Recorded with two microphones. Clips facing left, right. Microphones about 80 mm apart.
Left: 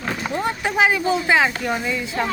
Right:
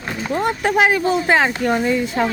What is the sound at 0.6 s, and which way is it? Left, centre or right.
A man's voice, right.